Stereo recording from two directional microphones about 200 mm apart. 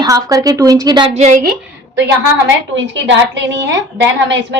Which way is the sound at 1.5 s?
60° right (ahead or behind).